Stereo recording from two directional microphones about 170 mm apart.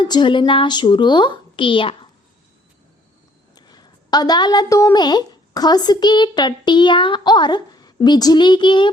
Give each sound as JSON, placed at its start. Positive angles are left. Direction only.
{"t": 0.0, "sound": "a woman's voice", "side_deg": 25}
{"t": 3.5, "sound": "a woman's voice", "side_deg": 25}